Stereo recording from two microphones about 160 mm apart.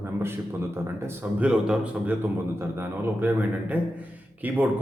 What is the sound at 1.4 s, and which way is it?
Speech, 5° right (ahead or behind).